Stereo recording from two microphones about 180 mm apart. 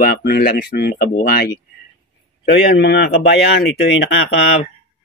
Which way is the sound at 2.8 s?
65° left (ahead or behind).